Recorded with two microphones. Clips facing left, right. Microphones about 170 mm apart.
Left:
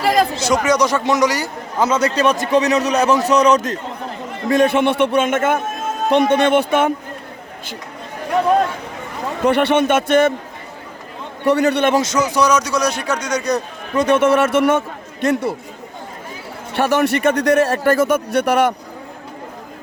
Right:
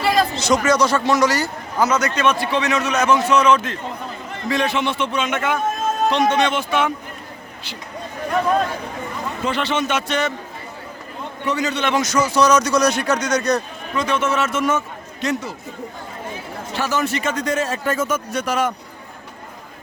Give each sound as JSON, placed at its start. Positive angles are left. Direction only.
{"t": 0.3, "sound": "speech", "side_deg": 10}
{"t": 1.8, "sound": "a man's voice", "side_deg": 30}
{"t": 9.4, "sound": "speech", "side_deg": 60}
{"t": 11.4, "sound": "speech", "side_deg": 60}
{"t": 11.9, "sound": "speech", "side_deg": 20}
{"t": 13.9, "sound": "speech", "side_deg": 50}
{"t": 16.7, "sound": "speech", "side_deg": 60}